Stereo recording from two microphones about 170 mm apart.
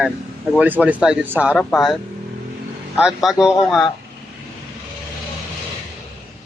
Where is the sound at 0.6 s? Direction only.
10° right (ahead or behind).